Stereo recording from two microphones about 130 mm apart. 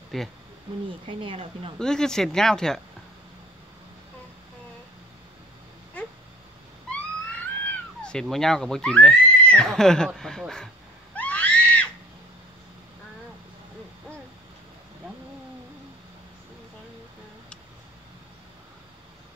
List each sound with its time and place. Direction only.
0.1 s speech: centre (ahead or behind)
1.0 s speech: 40° right (ahead or behind)
1.8 s speech: 5° left (ahead or behind)
6.9 s a sound: 10° left (ahead or behind)
11.1 s screaming: 10° left (ahead or behind)